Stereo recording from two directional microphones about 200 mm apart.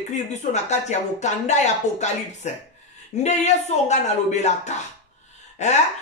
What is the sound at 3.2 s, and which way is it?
A man's voice, 35° left (ahead or behind).